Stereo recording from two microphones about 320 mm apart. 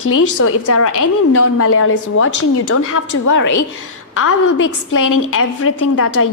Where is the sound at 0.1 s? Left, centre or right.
Left.